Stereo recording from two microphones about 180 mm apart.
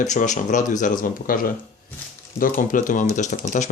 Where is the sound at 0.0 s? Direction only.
45° left (ahead or behind).